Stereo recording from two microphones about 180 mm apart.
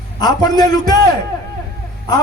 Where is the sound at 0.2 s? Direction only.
20° left (ahead or behind).